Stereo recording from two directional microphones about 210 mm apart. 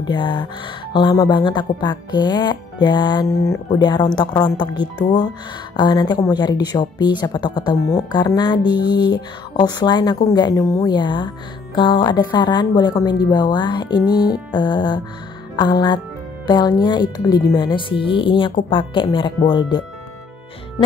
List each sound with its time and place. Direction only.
0.0 s speech: 20° left (ahead or behind)